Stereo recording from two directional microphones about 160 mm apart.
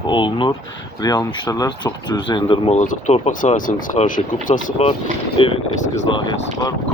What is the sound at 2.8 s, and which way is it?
Speech, 50° left (ahead or behind).